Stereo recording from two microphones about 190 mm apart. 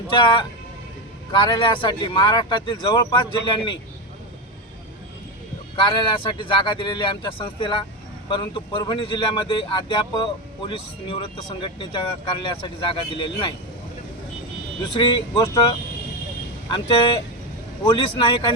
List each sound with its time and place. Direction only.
0.1 s speech: 25° left (ahead or behind)
5.7 s speech: 25° left (ahead or behind)
14.9 s speech: 25° left (ahead or behind)